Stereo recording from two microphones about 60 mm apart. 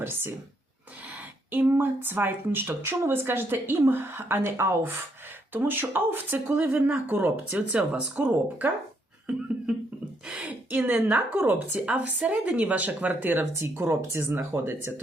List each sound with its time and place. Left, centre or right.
1.5 s a woman's voice: right
6.7 s a woman's voice: right
7.5 s speech: centre
8.1 s a woman's voice: right
9.3 s speech: centre
11.0 s a woman's voice: right
13.6 s a woman's voice: right